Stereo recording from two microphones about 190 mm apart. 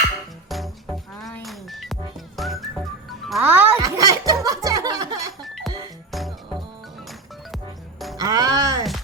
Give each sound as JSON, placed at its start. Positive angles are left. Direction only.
{"t": 0.0, "sound": "music", "side_deg": 0}
{"t": 6.1, "sound": "music", "side_deg": 0}
{"t": 8.2, "sound": "music", "side_deg": -20}